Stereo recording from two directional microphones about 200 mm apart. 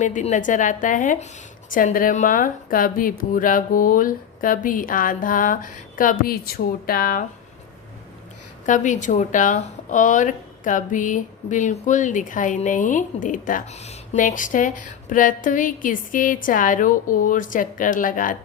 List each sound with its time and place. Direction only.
0.0 s a woman's voice: 35° left (ahead or behind)
8.6 s speech: 40° left (ahead or behind)